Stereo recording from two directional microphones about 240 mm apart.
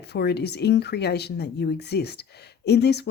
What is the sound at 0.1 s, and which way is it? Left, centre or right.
Speech, left.